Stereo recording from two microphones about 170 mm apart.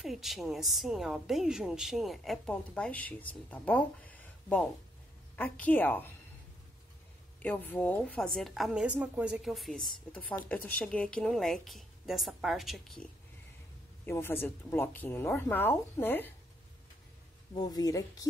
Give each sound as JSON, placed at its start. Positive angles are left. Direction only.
{"t": 0.0, "sound": "a woman's voice", "side_deg": 0}
{"t": 7.4, "sound": "a woman's voice", "side_deg": 10}
{"t": 14.0, "sound": "speech", "side_deg": 15}
{"t": 17.6, "sound": "speech", "side_deg": 20}